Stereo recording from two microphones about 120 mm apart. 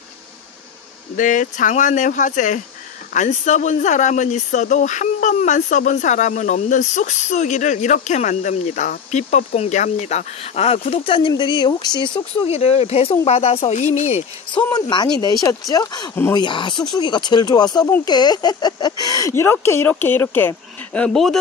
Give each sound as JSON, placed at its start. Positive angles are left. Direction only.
{"t": 1.1, "sound": "speech", "side_deg": 90}
{"t": 3.2, "sound": "speech", "side_deg": 80}
{"t": 12.4, "sound": "speech", "side_deg": 60}
{"t": 14.7, "sound": "speech", "side_deg": 35}